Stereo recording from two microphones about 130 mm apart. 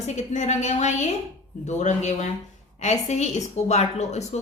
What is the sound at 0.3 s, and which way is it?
A woman's voice, 60° left (ahead or behind).